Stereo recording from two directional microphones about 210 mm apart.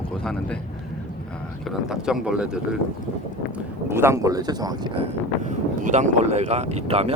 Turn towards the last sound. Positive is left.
turn(degrees=-30)  # may be behind; listen again after turning